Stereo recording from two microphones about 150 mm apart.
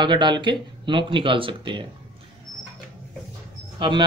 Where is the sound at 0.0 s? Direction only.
30° right (ahead or behind).